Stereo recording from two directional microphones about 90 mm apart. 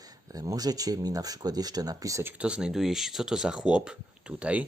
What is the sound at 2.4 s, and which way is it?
Speech, 10° right (ahead or behind).